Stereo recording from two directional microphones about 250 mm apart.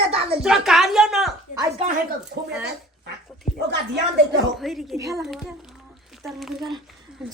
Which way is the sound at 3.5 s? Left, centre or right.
Left.